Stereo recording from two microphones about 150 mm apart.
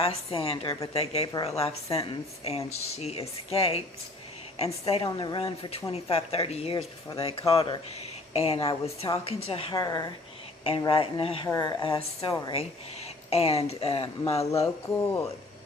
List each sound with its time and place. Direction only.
0.0 s speech: 40° left (ahead or behind)
5.0 s speech: 30° left (ahead or behind)
9.7 s speech: 25° left (ahead or behind)
10.6 s speech: 35° left (ahead or behind)
11.4 s speech: 25° left (ahead or behind)
13.3 s speech: 40° left (ahead or behind)